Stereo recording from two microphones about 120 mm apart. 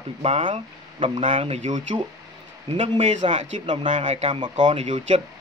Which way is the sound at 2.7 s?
50° right (ahead or behind).